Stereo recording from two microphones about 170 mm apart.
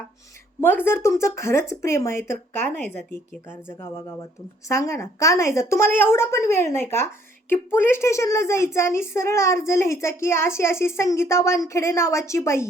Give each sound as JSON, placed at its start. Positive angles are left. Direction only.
{"t": 0.6, "sound": "a child's voice", "side_deg": 10}
{"t": 4.7, "sound": "a child's voice", "side_deg": 15}